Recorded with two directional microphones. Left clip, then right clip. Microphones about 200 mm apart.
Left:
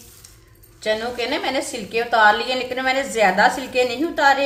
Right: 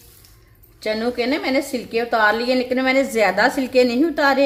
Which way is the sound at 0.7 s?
35° right (ahead or behind).